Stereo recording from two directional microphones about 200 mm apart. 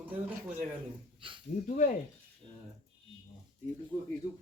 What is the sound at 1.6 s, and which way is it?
Speech, 40° left (ahead or behind).